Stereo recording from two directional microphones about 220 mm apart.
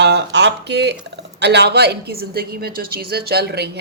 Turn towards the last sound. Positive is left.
turn(degrees=-50)  # may be behind; listen again after turning